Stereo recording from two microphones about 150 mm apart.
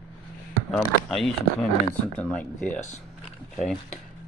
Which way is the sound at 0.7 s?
5° left (ahead or behind).